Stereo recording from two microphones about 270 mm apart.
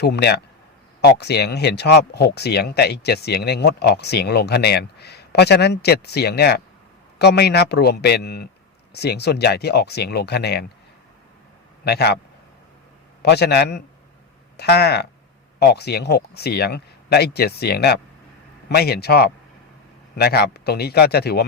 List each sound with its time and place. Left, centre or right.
0.0 s speech: left
11.9 s speech: left
13.2 s speech: left